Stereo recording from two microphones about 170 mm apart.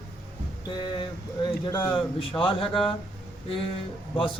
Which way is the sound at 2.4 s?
30° left (ahead or behind).